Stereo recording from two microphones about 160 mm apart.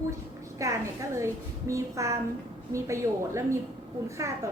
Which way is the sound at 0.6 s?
20° right (ahead or behind).